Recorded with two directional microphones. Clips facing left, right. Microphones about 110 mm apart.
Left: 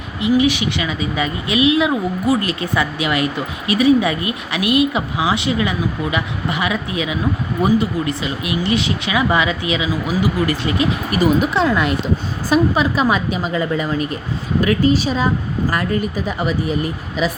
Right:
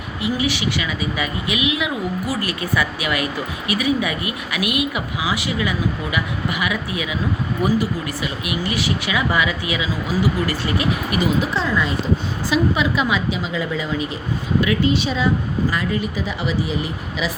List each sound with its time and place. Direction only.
0.2 s speech: 20° left (ahead or behind)
11.5 s speech: 65° left (ahead or behind)
12.5 s a woman's voice: 40° left (ahead or behind)
15.7 s a woman's voice: 50° left (ahead or behind)